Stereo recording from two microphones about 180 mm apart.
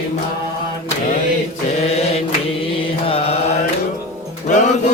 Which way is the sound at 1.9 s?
35° left (ahead or behind).